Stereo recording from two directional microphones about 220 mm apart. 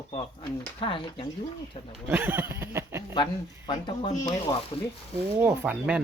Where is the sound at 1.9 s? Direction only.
5° right (ahead or behind).